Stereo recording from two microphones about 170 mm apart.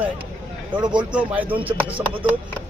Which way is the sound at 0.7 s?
25° right (ahead or behind).